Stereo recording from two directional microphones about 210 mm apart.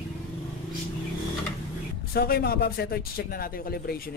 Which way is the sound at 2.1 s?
50° left (ahead or behind).